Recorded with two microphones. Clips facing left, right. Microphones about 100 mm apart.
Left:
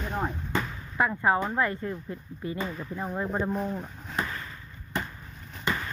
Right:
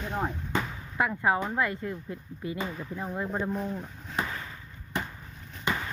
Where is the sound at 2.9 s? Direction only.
25° left (ahead or behind).